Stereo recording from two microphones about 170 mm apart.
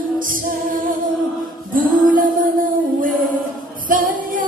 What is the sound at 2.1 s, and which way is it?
Music, 55° right (ahead or behind).